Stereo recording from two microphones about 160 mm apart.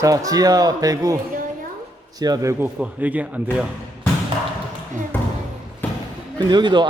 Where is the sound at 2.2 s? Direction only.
20° right (ahead or behind).